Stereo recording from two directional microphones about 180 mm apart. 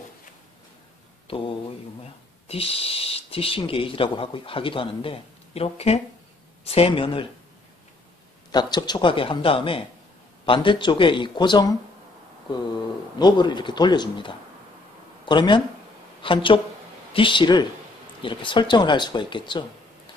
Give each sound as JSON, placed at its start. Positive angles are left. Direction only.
{"t": 2.4, "sound": "a man's voice", "side_deg": 30}
{"t": 8.5, "sound": "a man's voice", "side_deg": 25}
{"t": 13.2, "sound": "a man's voice", "side_deg": 25}